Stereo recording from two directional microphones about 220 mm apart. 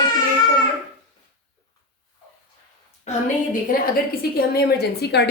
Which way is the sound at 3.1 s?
35° left (ahead or behind).